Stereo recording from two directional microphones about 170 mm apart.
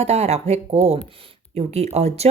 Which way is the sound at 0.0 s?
40° right (ahead or behind).